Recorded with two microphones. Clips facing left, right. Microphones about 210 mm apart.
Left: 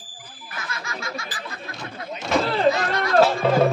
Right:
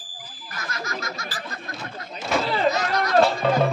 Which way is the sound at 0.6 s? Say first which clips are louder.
Right 2 dB; 40° right (ahead or behind).